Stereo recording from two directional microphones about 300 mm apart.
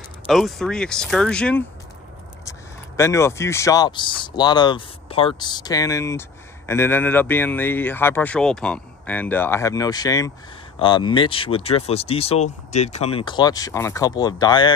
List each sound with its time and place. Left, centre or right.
0.3 s speech: centre
3.0 s speech: centre